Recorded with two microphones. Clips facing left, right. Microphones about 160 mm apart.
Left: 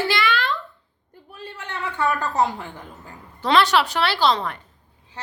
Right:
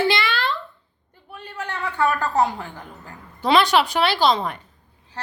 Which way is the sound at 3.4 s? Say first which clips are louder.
Right 1 dB; 15° right (ahead or behind).